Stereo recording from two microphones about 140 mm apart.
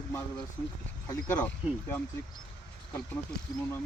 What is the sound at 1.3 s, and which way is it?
Speech, 15° left (ahead or behind).